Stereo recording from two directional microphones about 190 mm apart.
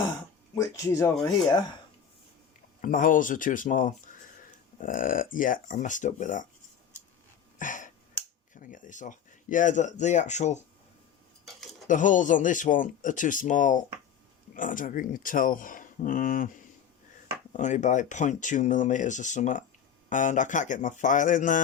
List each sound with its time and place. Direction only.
0.5 s speech: 15° left (ahead or behind)
2.8 s speech: 45° left (ahead or behind)
7.6 s finger snapping: 45° left (ahead or behind)
8.5 s speech: 45° left (ahead or behind)
11.9 s speech: 40° left (ahead or behind)
17.5 s speech: 40° left (ahead or behind)